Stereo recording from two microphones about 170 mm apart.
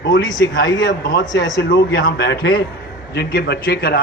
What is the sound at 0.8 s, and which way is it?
A man's voice, 70° left (ahead or behind).